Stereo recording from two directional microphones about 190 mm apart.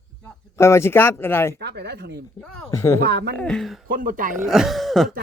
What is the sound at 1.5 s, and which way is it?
Speech, 60° right (ahead or behind).